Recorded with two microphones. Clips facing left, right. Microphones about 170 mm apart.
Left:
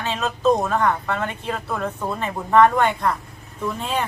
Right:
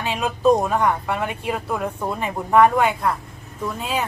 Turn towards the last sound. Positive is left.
turn(degrees=-5)  # may be behind; listen again after turning